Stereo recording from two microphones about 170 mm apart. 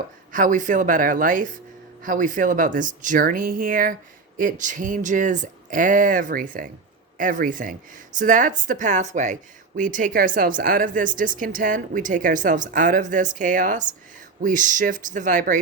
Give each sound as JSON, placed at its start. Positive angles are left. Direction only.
{"t": 0.3, "sound": "speech", "side_deg": -50}